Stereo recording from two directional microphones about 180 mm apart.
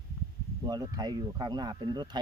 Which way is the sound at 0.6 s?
20° right (ahead or behind).